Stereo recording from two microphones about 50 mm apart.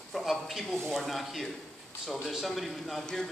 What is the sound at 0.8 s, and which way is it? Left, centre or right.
A man's voice, centre.